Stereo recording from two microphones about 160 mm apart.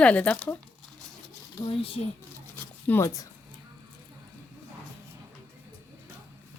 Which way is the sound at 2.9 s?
20° left (ahead or behind).